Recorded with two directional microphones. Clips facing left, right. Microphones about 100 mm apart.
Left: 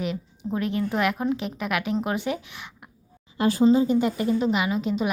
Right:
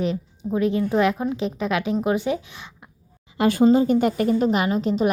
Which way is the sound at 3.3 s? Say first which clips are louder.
Right 2 dB; 65° right (ahead or behind).